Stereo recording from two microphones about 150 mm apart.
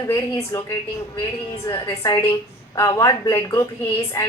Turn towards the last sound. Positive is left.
turn(degrees=20)  # may be behind; listen again after turning